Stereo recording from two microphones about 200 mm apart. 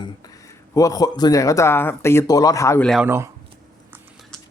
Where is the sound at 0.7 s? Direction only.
15° left (ahead or behind).